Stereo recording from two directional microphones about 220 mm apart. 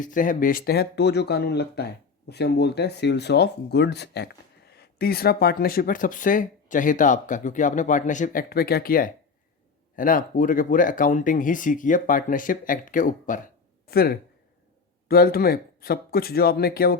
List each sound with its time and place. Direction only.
0.0 s speech: 35° left (ahead or behind)